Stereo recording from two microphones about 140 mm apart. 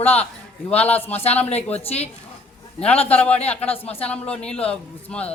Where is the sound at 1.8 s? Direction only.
50° left (ahead or behind).